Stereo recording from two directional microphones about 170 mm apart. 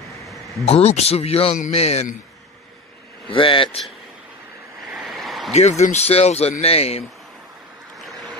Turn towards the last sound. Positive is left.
turn(degrees=35)  # may be behind; listen again after turning